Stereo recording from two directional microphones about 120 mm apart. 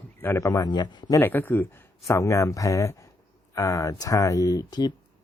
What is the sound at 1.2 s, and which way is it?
Speech, 15° left (ahead or behind).